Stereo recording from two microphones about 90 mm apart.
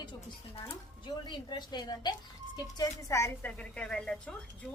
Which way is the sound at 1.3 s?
55° left (ahead or behind).